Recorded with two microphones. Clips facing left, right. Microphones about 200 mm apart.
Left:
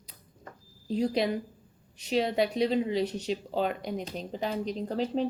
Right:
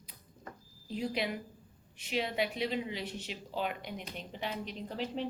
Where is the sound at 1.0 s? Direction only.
35° left (ahead or behind).